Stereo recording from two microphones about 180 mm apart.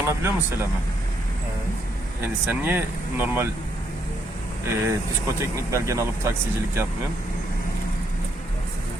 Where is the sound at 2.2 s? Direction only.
10° right (ahead or behind).